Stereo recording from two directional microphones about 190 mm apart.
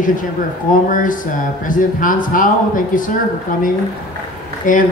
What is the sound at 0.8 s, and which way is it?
Speech, 45° left (ahead or behind).